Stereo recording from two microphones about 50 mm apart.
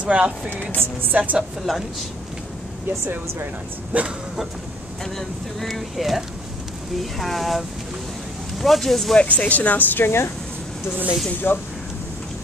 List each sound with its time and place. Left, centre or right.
0.0 s speech: right
0.5 s speech: left
1.1 s speech: right
1.7 s speech: centre
3.9 s speech: right
5.1 s speech: centre
8.6 s speech: centre
9.1 s speech: left
11.4 s speech: left